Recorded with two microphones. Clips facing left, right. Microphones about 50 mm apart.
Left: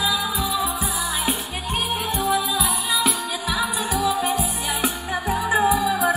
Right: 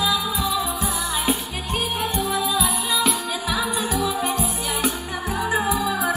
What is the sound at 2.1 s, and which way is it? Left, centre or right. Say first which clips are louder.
Music: left 3 dB; centre.